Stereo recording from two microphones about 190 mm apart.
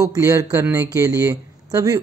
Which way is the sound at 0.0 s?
15° right (ahead or behind).